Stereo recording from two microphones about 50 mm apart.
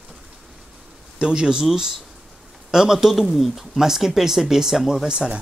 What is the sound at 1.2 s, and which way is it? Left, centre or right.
Speech, centre.